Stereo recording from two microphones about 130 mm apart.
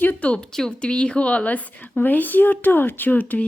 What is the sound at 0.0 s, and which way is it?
A woman's voice, 15° left (ahead or behind).